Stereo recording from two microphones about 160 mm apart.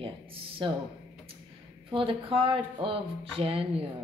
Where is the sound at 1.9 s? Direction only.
30° right (ahead or behind).